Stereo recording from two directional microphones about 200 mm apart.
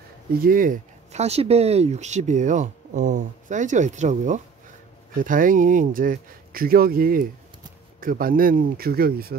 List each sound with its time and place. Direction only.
0.4 s speech: 45° right (ahead or behind)